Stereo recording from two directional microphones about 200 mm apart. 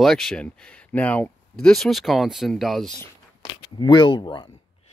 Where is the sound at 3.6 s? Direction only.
25° left (ahead or behind).